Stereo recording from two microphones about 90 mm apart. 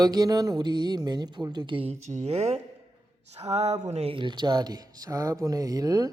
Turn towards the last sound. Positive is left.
turn(degrees=-45)  # may be behind; listen again after turning